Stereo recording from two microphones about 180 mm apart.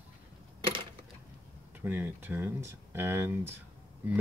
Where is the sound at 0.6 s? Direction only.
30° right (ahead or behind).